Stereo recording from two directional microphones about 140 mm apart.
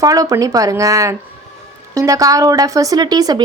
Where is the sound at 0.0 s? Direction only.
25° right (ahead or behind).